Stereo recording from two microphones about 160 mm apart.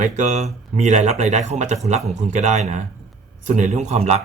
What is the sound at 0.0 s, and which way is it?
A man's voice, 50° right (ahead or behind).